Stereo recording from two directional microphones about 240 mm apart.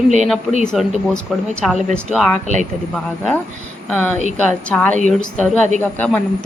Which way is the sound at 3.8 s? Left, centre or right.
Centre.